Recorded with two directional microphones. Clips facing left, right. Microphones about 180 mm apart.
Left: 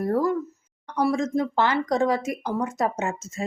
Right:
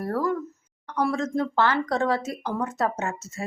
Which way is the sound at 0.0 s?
15° left (ahead or behind).